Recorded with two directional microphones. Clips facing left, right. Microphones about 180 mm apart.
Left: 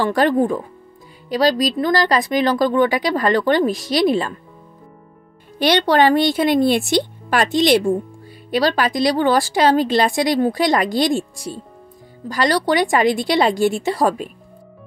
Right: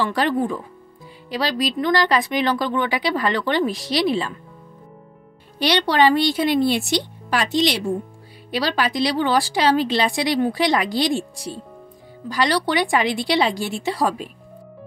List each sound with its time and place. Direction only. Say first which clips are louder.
0.0 s speech: left 4 dB; 45° left (ahead or behind)
5.6 s speech: left 3 dB; 50° left (ahead or behind)